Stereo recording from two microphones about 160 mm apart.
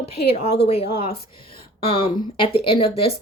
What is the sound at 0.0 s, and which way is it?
A woman's voice, 35° left (ahead or behind).